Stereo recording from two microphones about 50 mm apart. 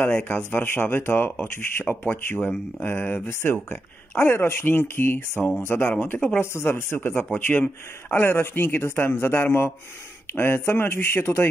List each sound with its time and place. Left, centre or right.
0.1 s speech: left
0.4 s speech: left
6.4 s speech: left
7.3 s speech: left